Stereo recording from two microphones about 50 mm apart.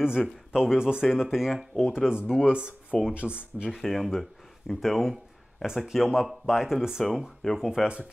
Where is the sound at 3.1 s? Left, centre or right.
Right.